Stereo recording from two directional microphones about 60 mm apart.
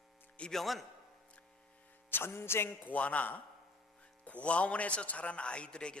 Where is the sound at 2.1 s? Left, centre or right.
Left.